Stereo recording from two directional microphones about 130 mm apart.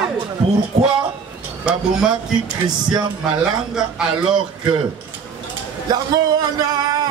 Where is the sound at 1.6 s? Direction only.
5° right (ahead or behind).